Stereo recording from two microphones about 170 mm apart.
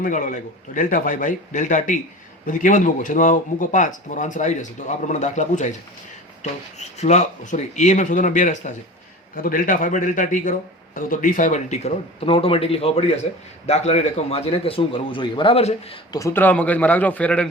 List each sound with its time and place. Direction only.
0.0 s a man's voice: 50° left (ahead or behind)
16.1 s speech: 15° left (ahead or behind)